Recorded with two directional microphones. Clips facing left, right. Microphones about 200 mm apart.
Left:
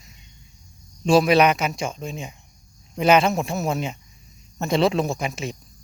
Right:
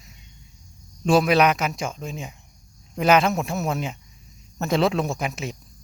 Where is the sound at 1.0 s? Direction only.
Centre (ahead or behind).